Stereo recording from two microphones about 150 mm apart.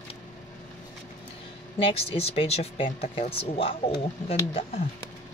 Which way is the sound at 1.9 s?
40° left (ahead or behind).